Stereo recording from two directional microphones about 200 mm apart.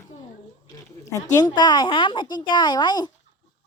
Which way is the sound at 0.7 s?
15° left (ahead or behind).